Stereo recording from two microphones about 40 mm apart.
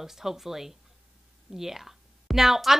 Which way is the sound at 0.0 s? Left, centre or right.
Centre.